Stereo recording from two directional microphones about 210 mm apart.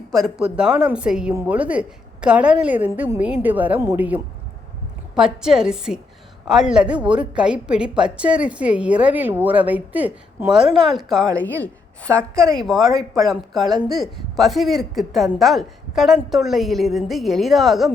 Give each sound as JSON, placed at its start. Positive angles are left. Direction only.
{"t": 0.1, "sound": "a woman's voice", "side_deg": 0}